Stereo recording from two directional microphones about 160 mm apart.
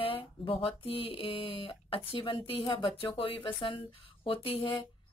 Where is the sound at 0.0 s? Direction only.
35° left (ahead or behind).